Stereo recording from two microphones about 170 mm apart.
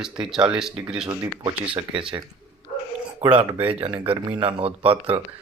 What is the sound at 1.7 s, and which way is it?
Speech, 30° right (ahead or behind).